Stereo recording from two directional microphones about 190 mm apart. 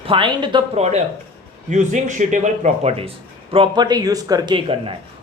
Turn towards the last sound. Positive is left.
turn(degrees=-25)  # may be behind; listen again after turning